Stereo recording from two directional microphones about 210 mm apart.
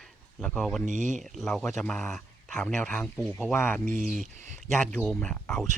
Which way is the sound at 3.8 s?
40° right (ahead or behind).